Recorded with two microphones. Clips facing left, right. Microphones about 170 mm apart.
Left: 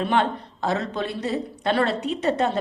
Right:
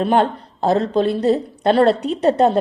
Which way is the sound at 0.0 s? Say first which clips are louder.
Right 6 dB; 35° right (ahead or behind).